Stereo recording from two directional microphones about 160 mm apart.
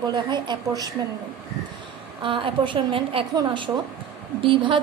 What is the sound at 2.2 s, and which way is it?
A woman's voice, 30° right (ahead or behind).